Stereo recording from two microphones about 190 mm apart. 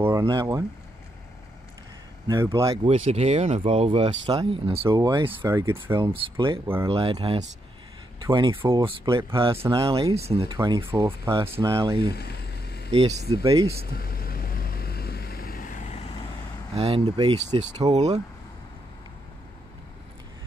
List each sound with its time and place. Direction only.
0.0 s speech: 20° right (ahead or behind)
2.2 s speech: 15° right (ahead or behind)
3.1 s speech: 35° right (ahead or behind)
9.5 s speech: 15° right (ahead or behind)
9.8 s speech: 25° right (ahead or behind)
11.4 s speech: 15° right (ahead or behind)
12.1 s vehicle: 55° left (ahead or behind)
12.9 s speech: 30° right (ahead or behind)
13.4 s speech: 20° right (ahead or behind)
13.9 s vehicle: 50° left (ahead or behind)
16.7 s speech: 30° right (ahead or behind)
17.9 s speech: 35° right (ahead or behind)